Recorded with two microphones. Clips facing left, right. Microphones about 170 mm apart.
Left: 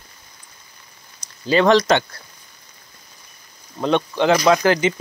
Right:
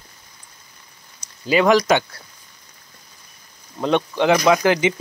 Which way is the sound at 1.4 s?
10° right (ahead or behind).